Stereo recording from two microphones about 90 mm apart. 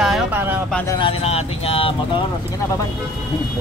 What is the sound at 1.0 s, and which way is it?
Speech, 90° left.